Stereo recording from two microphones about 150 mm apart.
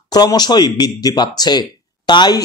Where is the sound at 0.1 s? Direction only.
25° left (ahead or behind).